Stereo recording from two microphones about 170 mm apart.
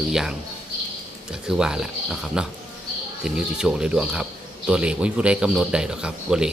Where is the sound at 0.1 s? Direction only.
5° right (ahead or behind).